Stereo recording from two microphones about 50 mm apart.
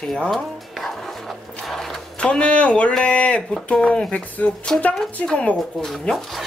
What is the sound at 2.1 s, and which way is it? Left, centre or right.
A woman's voice, left.